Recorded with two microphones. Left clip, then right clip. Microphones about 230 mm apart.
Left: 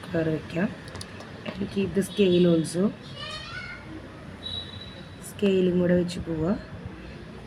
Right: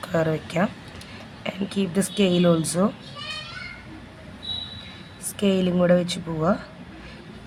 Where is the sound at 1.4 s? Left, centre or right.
Right.